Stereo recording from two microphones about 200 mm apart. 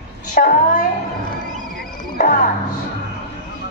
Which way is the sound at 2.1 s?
40° left (ahead or behind).